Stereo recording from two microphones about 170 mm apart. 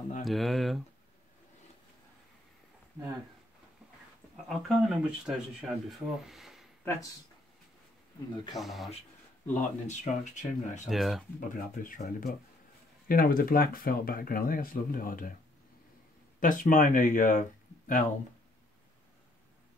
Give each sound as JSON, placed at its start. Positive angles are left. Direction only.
{"t": 0.2, "sound": "speech", "side_deg": 0}
{"t": 4.5, "sound": "speech", "side_deg": -5}
{"t": 8.5, "sound": "speech", "side_deg": 0}
{"t": 9.5, "sound": "speech", "side_deg": 45}
{"t": 10.9, "sound": "speech", "side_deg": 0}
{"t": 11.3, "sound": "speech", "side_deg": 55}
{"t": 16.3, "sound": "speech", "side_deg": 50}